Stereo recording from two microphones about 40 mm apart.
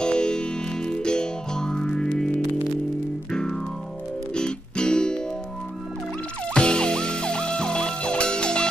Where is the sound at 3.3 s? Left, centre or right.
Centre.